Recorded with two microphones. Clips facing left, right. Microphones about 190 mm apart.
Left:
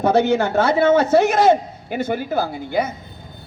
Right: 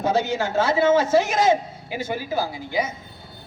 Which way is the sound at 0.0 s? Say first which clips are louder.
Left 6 dB; 65° left (ahead or behind).